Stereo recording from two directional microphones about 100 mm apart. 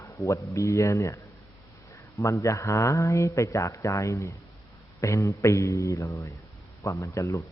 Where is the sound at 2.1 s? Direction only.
30° left (ahead or behind).